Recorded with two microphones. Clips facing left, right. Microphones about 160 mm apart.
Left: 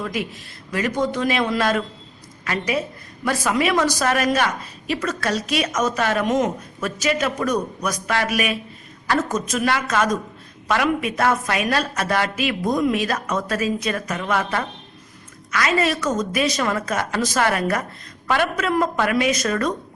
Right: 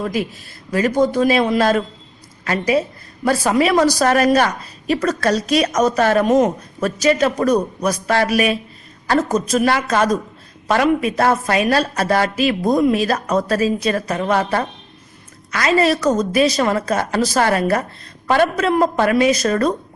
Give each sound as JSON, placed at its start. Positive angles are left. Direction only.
{"t": 0.0, "sound": "a woman's voice", "side_deg": -30}